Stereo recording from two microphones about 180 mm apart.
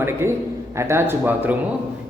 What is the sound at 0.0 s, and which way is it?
A man's voice, 15° right (ahead or behind).